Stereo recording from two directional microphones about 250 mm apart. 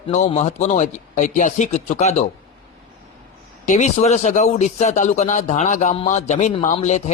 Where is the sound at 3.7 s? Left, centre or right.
Left.